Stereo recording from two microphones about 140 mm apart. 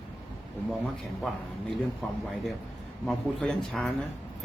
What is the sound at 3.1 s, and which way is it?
Speech, 5° left (ahead or behind).